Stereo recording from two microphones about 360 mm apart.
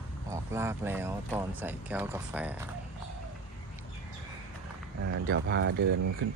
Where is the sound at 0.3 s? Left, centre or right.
Centre.